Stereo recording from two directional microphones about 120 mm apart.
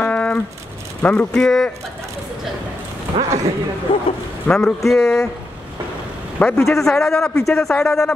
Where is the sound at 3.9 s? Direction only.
45° left (ahead or behind).